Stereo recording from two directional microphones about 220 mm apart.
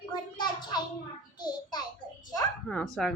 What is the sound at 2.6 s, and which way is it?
Speech, 5° left (ahead or behind).